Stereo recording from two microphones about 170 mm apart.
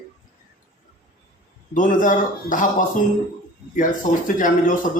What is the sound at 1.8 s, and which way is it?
Speech, 50° left (ahead or behind).